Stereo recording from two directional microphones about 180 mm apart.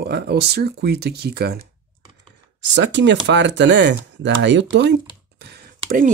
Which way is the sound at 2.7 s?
80° right.